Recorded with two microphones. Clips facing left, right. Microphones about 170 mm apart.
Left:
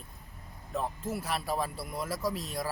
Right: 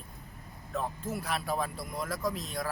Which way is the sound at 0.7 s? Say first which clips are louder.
Left 1 dB; centre (ahead or behind).